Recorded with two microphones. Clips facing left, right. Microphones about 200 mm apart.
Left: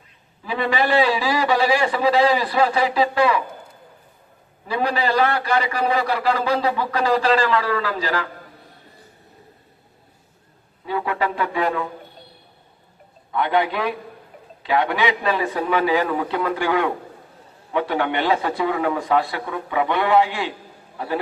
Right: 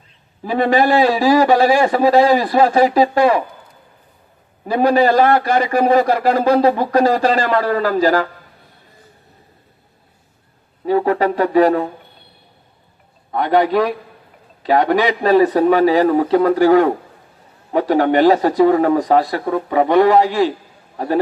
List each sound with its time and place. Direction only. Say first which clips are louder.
0.4 s a man's voice: right 7 dB; 45° right (ahead or behind)
4.6 s a man's voice: right 9 dB; 45° right (ahead or behind)
10.8 s speech: right 8 dB; 40° right (ahead or behind)
13.3 s speech: right 6 dB; 40° right (ahead or behind)